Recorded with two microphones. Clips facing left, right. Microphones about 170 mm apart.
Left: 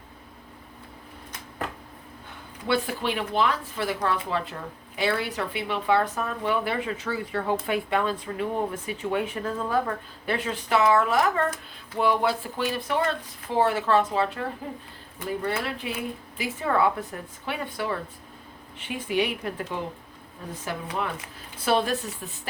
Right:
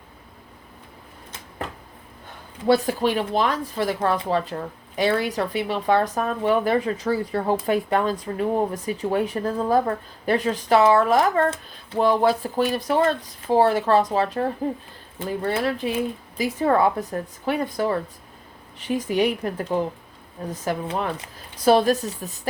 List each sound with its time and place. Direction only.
2.6 s speech: 40° right (ahead or behind)
15.4 s speech: 40° right (ahead or behind)